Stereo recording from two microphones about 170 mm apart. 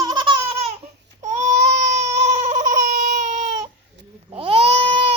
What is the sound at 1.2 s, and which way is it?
Baby cry, 45° right (ahead or behind).